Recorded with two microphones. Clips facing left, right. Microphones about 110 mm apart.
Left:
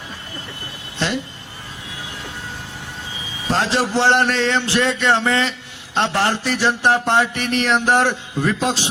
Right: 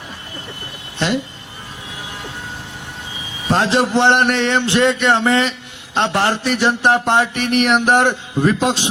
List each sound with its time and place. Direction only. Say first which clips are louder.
0.9 s speech: right 3 dB; 20° right (ahead or behind)
3.6 s a man's voice: right 3 dB; 20° right (ahead or behind)